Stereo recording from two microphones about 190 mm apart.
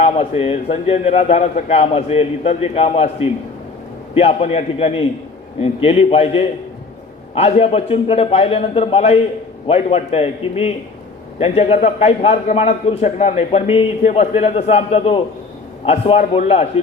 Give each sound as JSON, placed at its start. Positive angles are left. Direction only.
{"t": 0.0, "sound": "a man's voice", "side_deg": 30}